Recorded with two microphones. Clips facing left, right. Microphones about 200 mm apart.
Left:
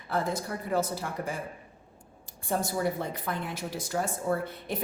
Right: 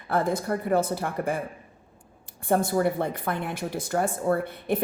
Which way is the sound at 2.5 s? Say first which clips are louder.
Right 6 dB; 55° right (ahead or behind).